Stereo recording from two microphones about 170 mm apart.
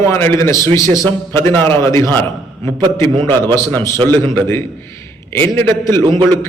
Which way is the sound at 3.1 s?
30° right (ahead or behind).